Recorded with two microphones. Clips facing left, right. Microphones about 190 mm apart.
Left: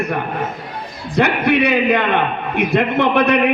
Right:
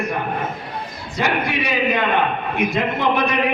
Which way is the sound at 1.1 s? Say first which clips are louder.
Left 7 dB; 60° left (ahead or behind).